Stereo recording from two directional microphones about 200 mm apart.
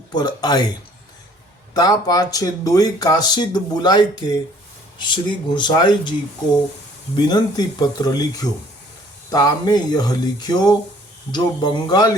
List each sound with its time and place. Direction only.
0.1 s speech: 20° left (ahead or behind)
1.7 s speech: 20° left (ahead or behind)
7.2 s speech: 20° left (ahead or behind)